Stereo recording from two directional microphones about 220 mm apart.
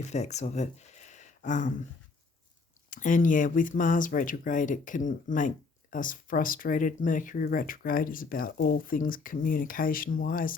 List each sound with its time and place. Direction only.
0.1 s speech: 30° left (ahead or behind)
2.9 s speech: 35° left (ahead or behind)